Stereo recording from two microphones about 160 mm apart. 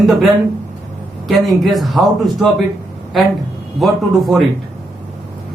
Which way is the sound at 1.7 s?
Centre (ahead or behind).